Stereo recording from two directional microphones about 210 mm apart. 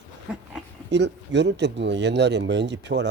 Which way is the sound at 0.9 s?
55° right (ahead or behind).